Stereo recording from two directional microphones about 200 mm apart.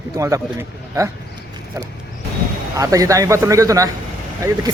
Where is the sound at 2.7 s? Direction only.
15° right (ahead or behind).